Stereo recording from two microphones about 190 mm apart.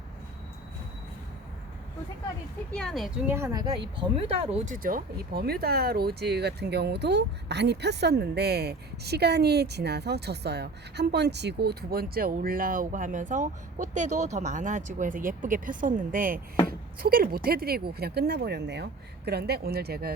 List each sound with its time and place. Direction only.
2.7 s a woman's voice: centre (ahead or behind)
3.2 s a woman's voice: 15° right (ahead or behind)
4.1 s speech: 40° right (ahead or behind); by 20.1 s 55° right (ahead or behind)